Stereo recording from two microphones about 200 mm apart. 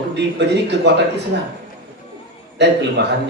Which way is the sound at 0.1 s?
60° right (ahead or behind).